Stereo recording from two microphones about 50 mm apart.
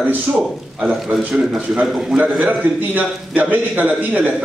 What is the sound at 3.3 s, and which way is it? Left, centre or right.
A man's voice, right.